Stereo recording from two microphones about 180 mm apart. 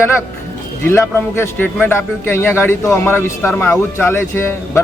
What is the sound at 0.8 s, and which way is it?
A man's voice, 15° left (ahead or behind).